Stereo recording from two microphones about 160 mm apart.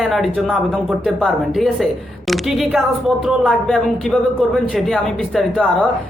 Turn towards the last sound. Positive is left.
turn(degrees=5)  # may be behind; listen again after turning